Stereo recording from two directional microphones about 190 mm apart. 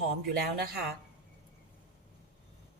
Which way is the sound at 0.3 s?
55° right (ahead or behind).